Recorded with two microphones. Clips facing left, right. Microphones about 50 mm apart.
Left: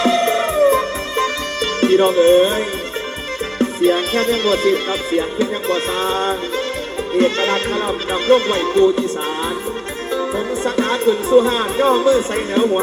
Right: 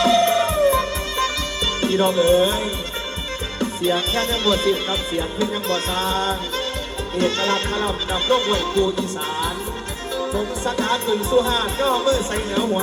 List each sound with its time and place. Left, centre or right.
0.0 s music: left
1.8 s music: left